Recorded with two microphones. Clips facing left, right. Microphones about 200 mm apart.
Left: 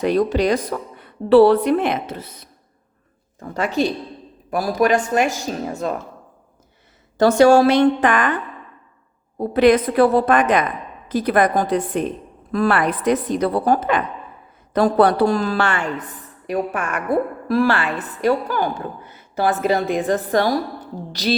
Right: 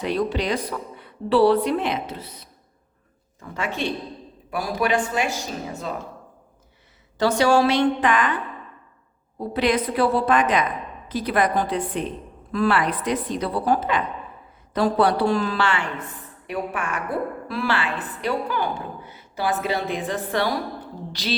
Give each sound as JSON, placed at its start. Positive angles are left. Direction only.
{"t": 0.0, "sound": "a woman's voice", "side_deg": 45}
{"t": 3.4, "sound": "a woman's voice", "side_deg": 40}
{"t": 7.2, "sound": "a woman's voice", "side_deg": 50}
{"t": 9.4, "sound": "a woman's voice", "side_deg": 50}